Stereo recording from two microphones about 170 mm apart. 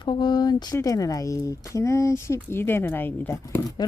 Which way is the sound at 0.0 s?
25° left (ahead or behind).